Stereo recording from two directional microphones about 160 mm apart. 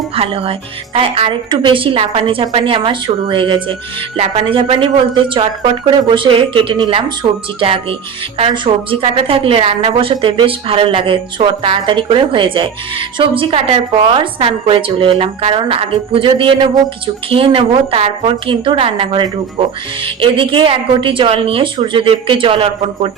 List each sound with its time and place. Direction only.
0.2 s a woman's voice: 35° right (ahead or behind)